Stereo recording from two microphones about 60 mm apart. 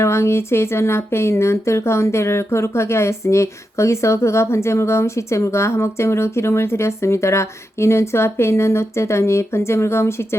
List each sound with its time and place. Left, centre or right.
0.0 s speech: left